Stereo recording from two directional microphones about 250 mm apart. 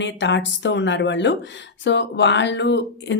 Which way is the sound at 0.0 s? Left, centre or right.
Left.